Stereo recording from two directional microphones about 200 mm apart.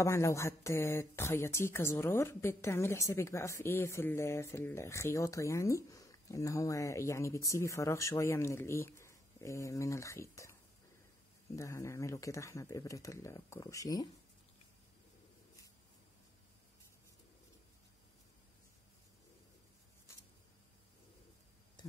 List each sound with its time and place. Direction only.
0.0 s speech: 15° left (ahead or behind)
11.5 s speech: 15° left (ahead or behind)